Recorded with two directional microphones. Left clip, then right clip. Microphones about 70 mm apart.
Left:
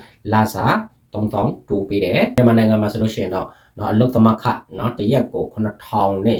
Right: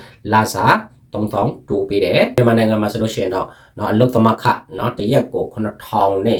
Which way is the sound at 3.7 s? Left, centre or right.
Right.